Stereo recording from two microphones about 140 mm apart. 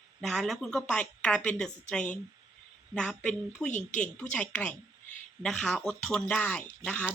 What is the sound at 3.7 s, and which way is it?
Speech, 60° left (ahead or behind).